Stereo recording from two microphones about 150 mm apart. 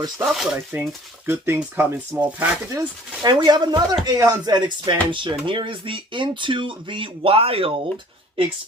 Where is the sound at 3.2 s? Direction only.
30° right (ahead or behind).